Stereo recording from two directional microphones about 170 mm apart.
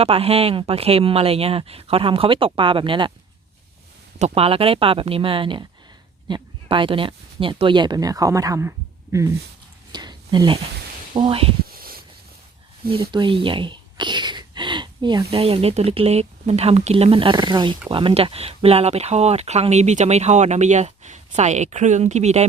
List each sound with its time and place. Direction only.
0.0 s speech: 35° right (ahead or behind)
4.2 s speech: 35° right (ahead or behind); by 8.7 s 20° right (ahead or behind)
9.9 s a sound: 25° right (ahead or behind)
11.1 s speech: 30° right (ahead or behind)
11.7 s a sound: 60° right (ahead or behind)
12.9 s speech: 30° right (ahead or behind)